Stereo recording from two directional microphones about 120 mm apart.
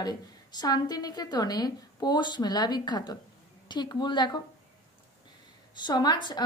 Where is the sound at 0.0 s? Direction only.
35° left (ahead or behind).